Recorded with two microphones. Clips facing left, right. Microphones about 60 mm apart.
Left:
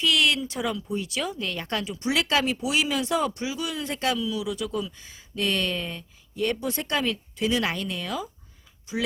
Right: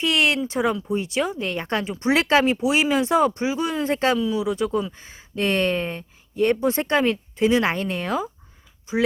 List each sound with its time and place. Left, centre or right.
0.0 s speech: right